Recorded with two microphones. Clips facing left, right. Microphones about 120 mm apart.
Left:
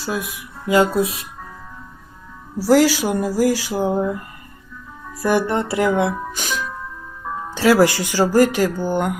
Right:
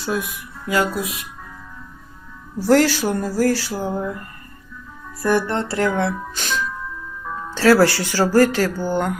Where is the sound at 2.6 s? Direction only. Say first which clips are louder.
Left 1 dB; 5° left (ahead or behind).